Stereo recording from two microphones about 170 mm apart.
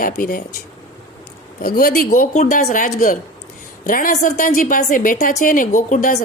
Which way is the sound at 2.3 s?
40° left (ahead or behind).